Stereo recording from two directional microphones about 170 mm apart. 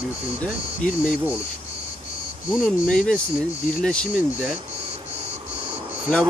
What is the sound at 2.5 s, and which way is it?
Speech, 5° left (ahead or behind).